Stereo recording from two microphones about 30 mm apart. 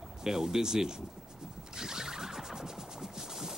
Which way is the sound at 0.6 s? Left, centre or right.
Centre.